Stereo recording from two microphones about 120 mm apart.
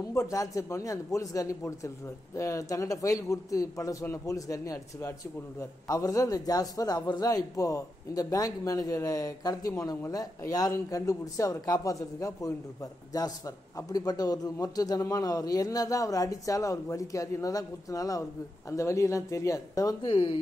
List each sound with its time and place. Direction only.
0.1 s a man's voice: 25° left (ahead or behind)
13.7 s a man's voice: 30° left (ahead or behind)
20.1 s speech: 45° left (ahead or behind)